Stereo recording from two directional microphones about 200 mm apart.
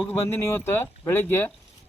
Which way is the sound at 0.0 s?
10° left (ahead or behind).